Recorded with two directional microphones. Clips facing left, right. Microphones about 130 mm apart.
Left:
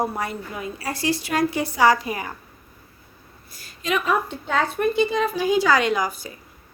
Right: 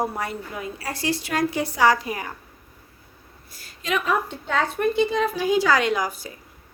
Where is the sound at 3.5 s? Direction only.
15° left (ahead or behind).